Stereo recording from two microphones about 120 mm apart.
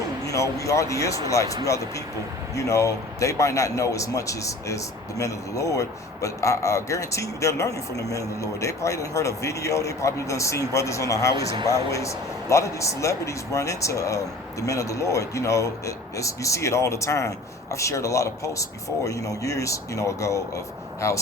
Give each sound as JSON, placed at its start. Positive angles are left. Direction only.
{"t": 0.3, "sound": "a man's voice", "side_deg": 25}
{"t": 2.6, "sound": "a man's voice", "side_deg": 25}